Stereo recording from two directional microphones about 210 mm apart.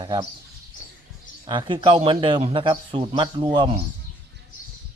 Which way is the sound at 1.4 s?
20° right (ahead or behind).